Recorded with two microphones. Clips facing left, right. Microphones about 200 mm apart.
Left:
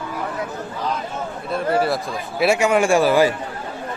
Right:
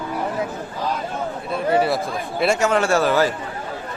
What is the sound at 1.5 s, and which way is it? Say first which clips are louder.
A man's voice: even; centre (ahead or behind).